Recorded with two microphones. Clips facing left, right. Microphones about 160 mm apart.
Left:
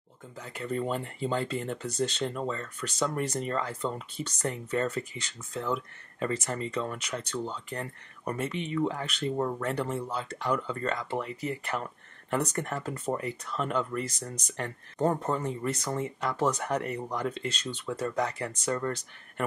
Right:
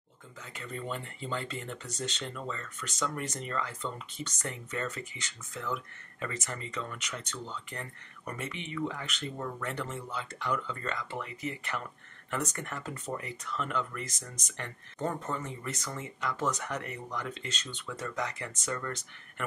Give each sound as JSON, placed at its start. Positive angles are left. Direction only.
{"t": 0.4, "sound": "speech", "side_deg": 40}